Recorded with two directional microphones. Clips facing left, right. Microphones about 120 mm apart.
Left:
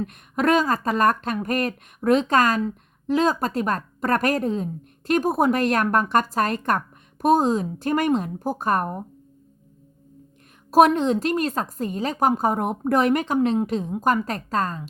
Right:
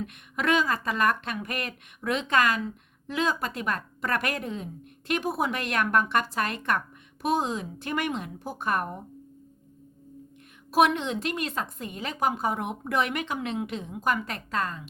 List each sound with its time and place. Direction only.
0.0 s speech: 40° left (ahead or behind)
10.7 s speech: 40° left (ahead or behind)